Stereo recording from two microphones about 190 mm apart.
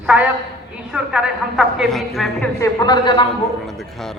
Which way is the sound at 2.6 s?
20° left (ahead or behind).